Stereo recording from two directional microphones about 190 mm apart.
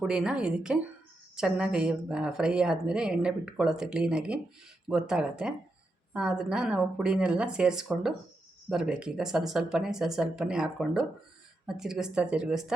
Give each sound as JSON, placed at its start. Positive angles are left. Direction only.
{"t": 0.0, "sound": "a woman's voice", "side_deg": -5}